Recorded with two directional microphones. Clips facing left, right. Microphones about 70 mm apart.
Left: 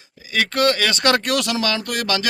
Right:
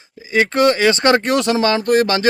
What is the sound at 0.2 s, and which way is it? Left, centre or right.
Speech, right.